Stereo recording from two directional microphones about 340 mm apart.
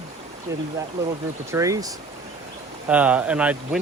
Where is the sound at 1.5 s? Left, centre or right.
Centre.